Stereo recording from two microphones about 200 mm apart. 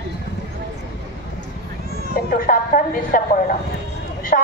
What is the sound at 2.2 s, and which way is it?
A woman's voice, 45° left (ahead or behind).